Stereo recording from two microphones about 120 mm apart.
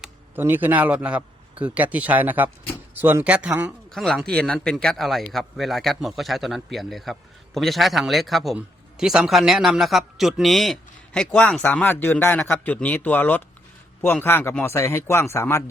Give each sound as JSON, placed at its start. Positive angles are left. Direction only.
{"t": 0.3, "sound": "a man's voice", "side_deg": -15}
{"t": 3.9, "sound": "a man's voice", "side_deg": 0}